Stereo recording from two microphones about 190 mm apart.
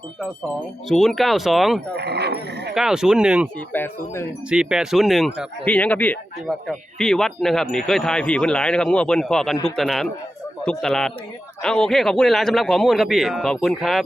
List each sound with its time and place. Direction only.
0.9 s speech: centre (ahead or behind)
2.0 s speech: 60° right (ahead or behind)
2.7 s speech: 5° right (ahead or behind)
3.7 s speech: 10° left (ahead or behind)
4.4 s speech: 5° right (ahead or behind)